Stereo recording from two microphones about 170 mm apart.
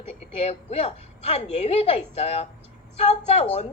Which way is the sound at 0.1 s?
40° left (ahead or behind).